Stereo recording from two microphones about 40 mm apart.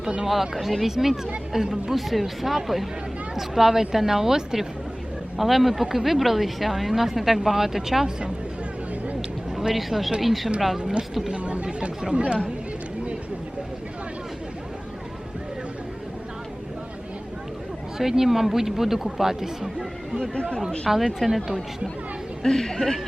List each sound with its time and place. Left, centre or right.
0.3 s speech: centre
9.5 s speech: centre
10.8 s speech: right
17.9 s speech: centre
20.3 s speech: left
20.9 s speech: centre
22.4 s speech: centre